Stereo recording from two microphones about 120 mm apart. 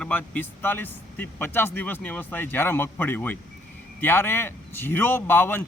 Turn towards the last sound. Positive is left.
turn(degrees=20)  # may be behind; listen again after turning